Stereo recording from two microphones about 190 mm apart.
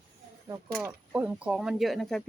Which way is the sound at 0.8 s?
10° right (ahead or behind).